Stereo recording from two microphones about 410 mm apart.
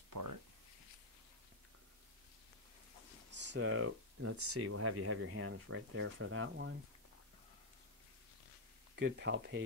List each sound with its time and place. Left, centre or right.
0.1 s a sound: right
3.3 s speech: right
8.9 s speech: right